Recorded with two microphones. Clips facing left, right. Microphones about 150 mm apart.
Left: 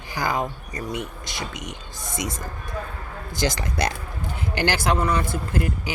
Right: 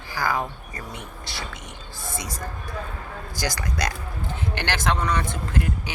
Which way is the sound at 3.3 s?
25° left (ahead or behind).